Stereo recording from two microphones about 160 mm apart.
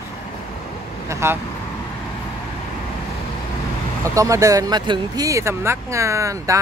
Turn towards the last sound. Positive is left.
turn(degrees=-20)  # may be behind; listen again after turning